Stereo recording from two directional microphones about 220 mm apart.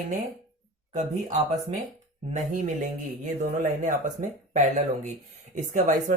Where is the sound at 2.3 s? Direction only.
35° right (ahead or behind).